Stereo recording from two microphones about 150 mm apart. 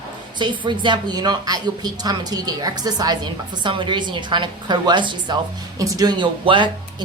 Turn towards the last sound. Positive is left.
turn(degrees=-30)  # may be behind; listen again after turning